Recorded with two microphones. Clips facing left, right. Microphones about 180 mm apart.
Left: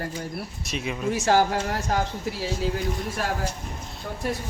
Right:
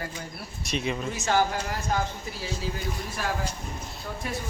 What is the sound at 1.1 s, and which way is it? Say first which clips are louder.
Speech: left 7 dB; 70° left (ahead or behind).